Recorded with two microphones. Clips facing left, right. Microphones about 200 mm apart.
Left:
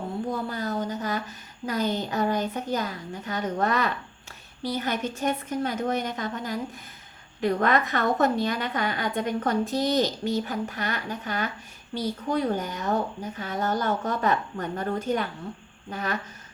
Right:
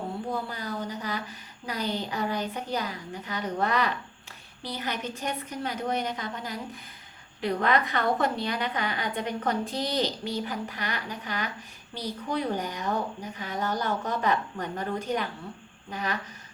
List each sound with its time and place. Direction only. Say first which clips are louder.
0.5 s a woman's voice: left 5 dB; 45° left (ahead or behind)